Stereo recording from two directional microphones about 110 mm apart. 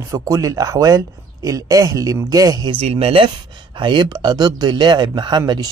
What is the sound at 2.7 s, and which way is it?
Speech, 65° right (ahead or behind).